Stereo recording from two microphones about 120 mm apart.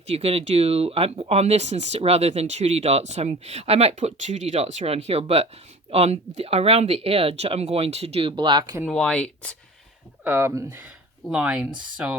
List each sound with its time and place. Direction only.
0.1 s speech: 55° right (ahead or behind); by 8.8 s 35° right (ahead or behind)
8.9 s speech: 5° left (ahead or behind)
10.2 s speech: 20° right (ahead or behind)
11.3 s speech: 10° right (ahead or behind)